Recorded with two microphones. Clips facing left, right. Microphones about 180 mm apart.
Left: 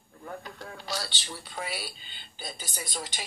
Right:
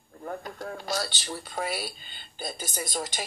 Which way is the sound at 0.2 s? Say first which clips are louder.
Right 5 dB; 45° right (ahead or behind).